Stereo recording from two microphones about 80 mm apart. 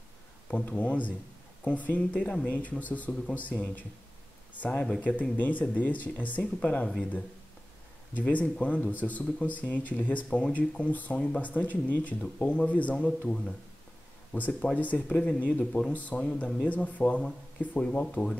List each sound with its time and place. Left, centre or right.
0.5 s speech: centre
15.6 s speech: centre
15.9 s speech: centre